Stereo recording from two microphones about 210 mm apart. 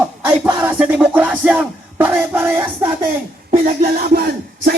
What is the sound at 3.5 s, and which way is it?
Speech, 45° right (ahead or behind).